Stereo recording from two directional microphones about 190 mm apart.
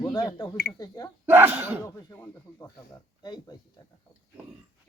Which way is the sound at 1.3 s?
10° right (ahead or behind).